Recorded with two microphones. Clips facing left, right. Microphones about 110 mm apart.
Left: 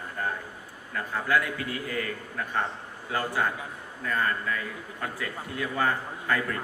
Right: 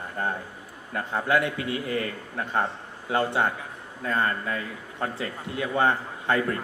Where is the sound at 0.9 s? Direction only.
25° right (ahead or behind).